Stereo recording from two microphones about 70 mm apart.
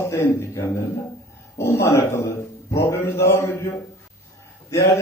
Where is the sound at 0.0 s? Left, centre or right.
Left.